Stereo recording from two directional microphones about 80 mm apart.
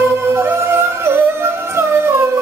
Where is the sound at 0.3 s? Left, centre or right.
Right.